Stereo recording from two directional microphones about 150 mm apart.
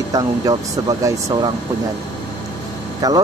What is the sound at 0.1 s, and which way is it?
Speech, 25° right (ahead or behind).